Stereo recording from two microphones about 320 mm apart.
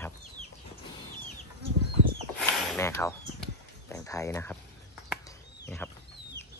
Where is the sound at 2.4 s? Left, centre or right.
Centre.